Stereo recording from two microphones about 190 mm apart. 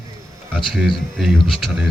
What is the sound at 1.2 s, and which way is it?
Speech, centre (ahead or behind).